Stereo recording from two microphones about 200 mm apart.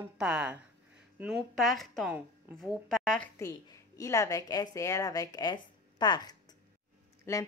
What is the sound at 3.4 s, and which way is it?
Speech, 15° left (ahead or behind).